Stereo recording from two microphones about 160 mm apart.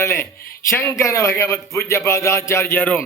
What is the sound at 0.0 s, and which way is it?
A man's voice, 15° left (ahead or behind).